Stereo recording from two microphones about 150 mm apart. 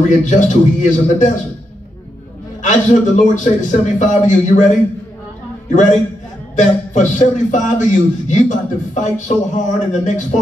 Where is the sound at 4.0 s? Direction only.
55° left (ahead or behind).